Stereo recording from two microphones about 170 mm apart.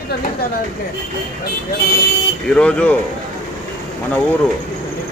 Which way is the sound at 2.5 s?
5° left (ahead or behind).